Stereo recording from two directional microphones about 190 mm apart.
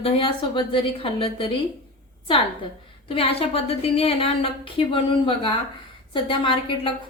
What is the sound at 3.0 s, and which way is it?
A woman's voice, 30° left (ahead or behind).